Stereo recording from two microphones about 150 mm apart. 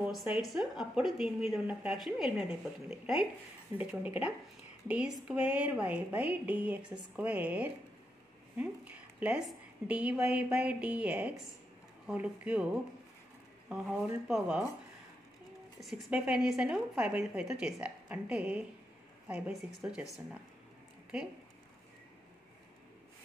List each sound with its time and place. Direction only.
0.1 s speech: centre (ahead or behind)
3.7 s a woman's voice: 10° right (ahead or behind)
15.8 s a woman's voice: centre (ahead or behind)